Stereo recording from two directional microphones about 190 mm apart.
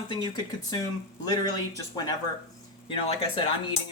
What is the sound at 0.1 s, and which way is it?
Speech, 20° left (ahead or behind).